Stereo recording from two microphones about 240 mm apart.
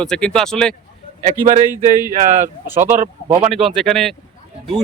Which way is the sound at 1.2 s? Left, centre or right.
Right.